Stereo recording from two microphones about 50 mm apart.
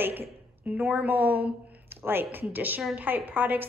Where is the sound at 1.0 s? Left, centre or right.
Right.